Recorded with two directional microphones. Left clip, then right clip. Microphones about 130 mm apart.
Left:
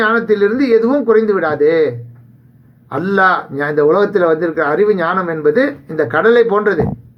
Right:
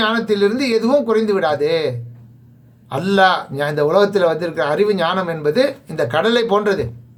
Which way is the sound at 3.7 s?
50° right (ahead or behind).